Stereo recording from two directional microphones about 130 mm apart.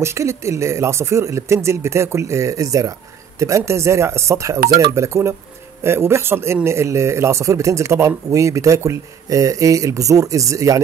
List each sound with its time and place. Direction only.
0.0 s speech: 20° right (ahead or behind)